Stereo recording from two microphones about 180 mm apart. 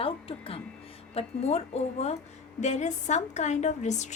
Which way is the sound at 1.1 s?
35° left (ahead or behind).